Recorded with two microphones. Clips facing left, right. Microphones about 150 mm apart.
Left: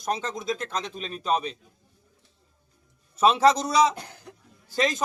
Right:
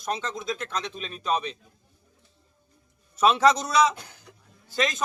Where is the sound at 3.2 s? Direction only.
30° left (ahead or behind).